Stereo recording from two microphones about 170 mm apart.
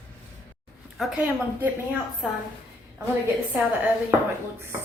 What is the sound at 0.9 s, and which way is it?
A woman's voice, centre (ahead or behind).